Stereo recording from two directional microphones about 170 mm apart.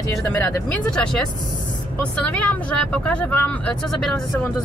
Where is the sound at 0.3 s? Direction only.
10° left (ahead or behind).